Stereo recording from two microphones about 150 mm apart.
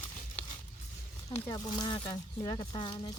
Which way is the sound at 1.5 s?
25° left (ahead or behind).